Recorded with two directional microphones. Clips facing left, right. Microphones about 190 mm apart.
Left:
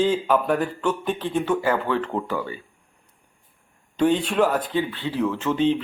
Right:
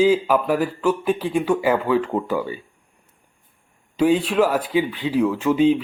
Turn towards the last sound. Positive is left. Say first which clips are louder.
# right 4 dB
turn(degrees=-10)  # may be behind; listen again after turning